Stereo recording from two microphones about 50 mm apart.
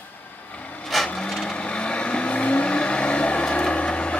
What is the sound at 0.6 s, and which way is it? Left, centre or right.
Vehicle, left.